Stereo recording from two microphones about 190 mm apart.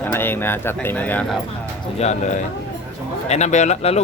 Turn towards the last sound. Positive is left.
turn(degrees=35)  # may be behind; listen again after turning